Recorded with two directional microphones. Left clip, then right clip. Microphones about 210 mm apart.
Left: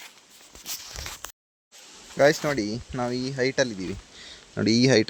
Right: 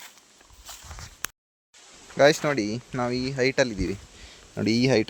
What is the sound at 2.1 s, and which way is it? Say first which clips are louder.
Speech: right 1 dB; 10° right (ahead or behind).